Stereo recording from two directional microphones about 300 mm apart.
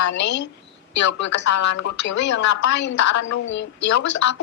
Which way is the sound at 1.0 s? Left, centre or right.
Left.